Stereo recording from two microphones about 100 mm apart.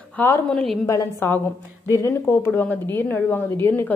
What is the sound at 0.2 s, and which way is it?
A woman's voice, 15° left (ahead or behind).